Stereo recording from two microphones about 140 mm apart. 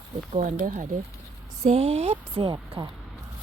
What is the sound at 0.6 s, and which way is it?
Speech, 70° right (ahead or behind).